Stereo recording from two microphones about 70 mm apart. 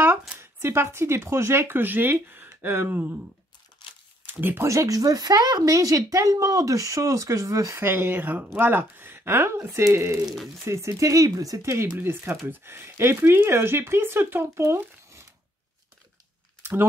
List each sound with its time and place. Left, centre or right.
0.4 s speech: right
4.3 s speech: right
4.6 s speech: right
7.7 s speech: right
10.2 s speech: centre
10.6 s speech: right